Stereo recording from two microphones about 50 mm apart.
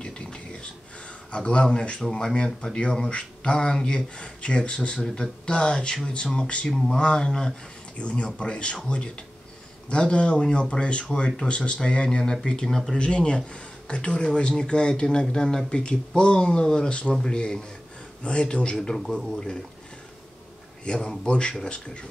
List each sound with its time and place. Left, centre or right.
0.0 s a sound: centre
1.3 s speech: left
8.0 s speech: left
13.0 s speech: left
18.8 s speech: centre
20.8 s speech: centre